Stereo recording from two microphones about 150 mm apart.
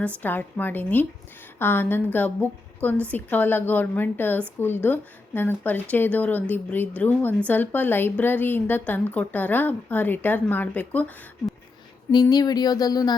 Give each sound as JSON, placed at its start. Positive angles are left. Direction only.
{"t": 0.2, "sound": "speech", "side_deg": 10}
{"t": 12.1, "sound": "speech", "side_deg": 25}